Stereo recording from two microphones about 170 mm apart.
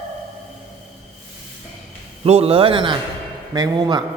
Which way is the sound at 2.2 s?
35° right (ahead or behind).